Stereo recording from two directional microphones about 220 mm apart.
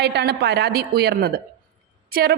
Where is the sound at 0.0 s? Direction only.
50° right (ahead or behind).